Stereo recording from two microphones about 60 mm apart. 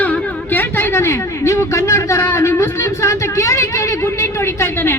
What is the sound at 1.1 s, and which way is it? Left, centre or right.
A man's voice, left.